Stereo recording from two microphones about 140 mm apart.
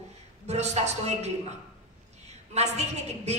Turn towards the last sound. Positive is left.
turn(degrees=-50)  # may be behind; listen again after turning